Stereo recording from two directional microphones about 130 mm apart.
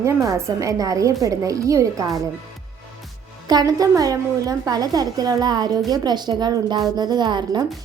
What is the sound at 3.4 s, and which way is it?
A woman's voice, 30° right (ahead or behind).